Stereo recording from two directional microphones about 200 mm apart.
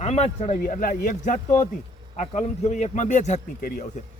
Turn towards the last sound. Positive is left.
turn(degrees=40)  # may be behind; listen again after turning